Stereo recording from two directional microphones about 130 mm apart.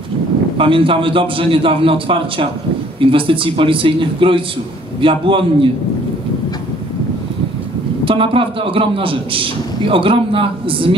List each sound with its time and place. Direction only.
0.6 s a man's voice: 40° right (ahead or behind)
8.0 s a man's voice: 45° right (ahead or behind)